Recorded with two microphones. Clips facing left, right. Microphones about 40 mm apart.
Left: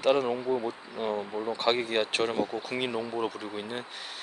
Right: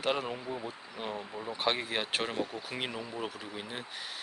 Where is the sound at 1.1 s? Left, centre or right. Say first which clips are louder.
Left 7 dB; left.